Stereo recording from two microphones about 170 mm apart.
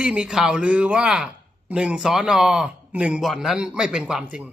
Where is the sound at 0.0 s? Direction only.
5° right (ahead or behind).